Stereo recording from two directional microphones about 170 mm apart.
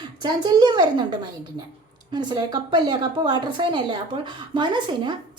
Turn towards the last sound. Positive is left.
turn(degrees=-25)  # may be behind; listen again after turning